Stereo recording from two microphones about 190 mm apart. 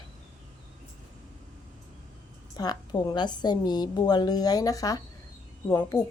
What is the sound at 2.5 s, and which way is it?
A woman's voice, 20° left (ahead or behind).